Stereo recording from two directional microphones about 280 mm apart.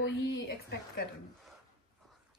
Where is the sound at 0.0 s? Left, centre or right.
Left.